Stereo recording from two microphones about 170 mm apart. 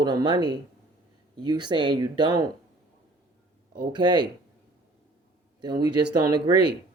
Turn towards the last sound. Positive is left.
turn(degrees=-25)  # may be behind; listen again after turning